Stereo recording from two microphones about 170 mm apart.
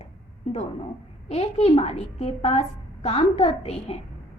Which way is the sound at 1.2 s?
40° left (ahead or behind).